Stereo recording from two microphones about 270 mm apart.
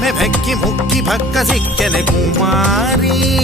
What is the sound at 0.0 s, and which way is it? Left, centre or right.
Music, centre.